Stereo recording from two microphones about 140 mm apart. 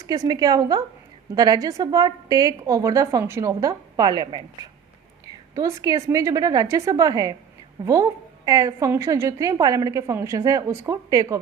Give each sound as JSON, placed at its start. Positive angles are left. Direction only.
{"t": 0.0, "sound": "a woman's voice", "side_deg": -25}
{"t": 5.5, "sound": "a woman's voice", "side_deg": -25}